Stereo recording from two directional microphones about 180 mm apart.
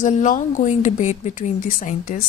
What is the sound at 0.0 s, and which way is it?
A woman's voice, 45° left (ahead or behind).